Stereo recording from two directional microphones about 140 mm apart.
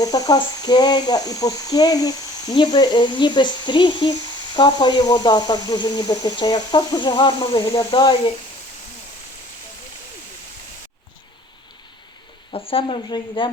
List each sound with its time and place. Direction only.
0.0 s a child's voice: 25° left (ahead or behind)
12.5 s speech: 40° left (ahead or behind)